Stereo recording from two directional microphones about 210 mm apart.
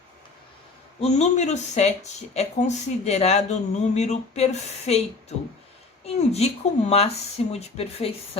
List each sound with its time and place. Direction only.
1.0 s speech: 35° left (ahead or behind)
6.1 s speech: 30° left (ahead or behind)